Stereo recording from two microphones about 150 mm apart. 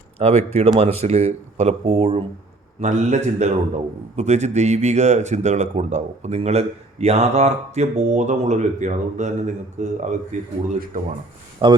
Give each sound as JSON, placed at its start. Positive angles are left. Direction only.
{"t": 0.2, "sound": "speech", "side_deg": -45}
{"t": 10.9, "sound": "a man's voice", "side_deg": -65}
{"t": 11.6, "sound": "speech", "side_deg": -35}